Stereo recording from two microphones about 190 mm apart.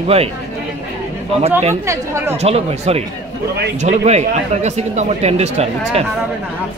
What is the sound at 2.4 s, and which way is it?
Speech, 35° right (ahead or behind).